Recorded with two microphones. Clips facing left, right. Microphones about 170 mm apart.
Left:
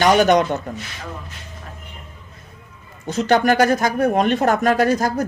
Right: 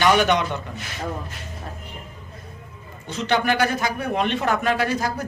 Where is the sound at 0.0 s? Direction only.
45° left (ahead or behind).